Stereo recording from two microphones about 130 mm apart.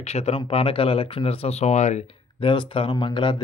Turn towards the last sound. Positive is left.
turn(degrees=40)  # may be behind; listen again after turning